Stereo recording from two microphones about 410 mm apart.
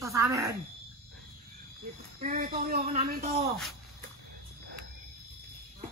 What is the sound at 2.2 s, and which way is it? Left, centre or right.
A man's voice, centre.